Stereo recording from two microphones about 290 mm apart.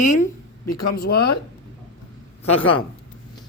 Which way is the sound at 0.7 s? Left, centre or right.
Left.